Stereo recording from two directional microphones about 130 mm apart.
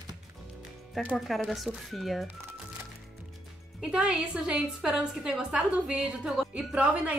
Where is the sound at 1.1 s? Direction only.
Centre (ahead or behind).